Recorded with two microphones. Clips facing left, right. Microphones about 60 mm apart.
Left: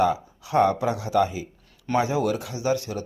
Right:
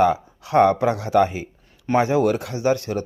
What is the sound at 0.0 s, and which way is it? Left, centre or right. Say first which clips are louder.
Speech: right 4 dB; right.